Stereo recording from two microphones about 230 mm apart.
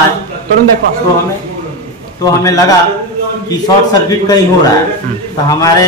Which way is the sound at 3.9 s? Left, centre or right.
Centre.